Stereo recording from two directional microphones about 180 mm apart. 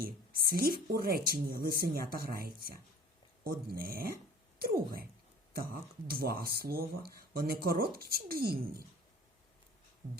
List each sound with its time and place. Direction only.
0.0 s speech: 55° right (ahead or behind)